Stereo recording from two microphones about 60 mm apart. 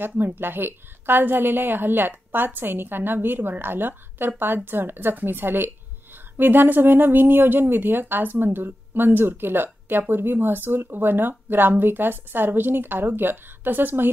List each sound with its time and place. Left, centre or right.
0.0 s speech: right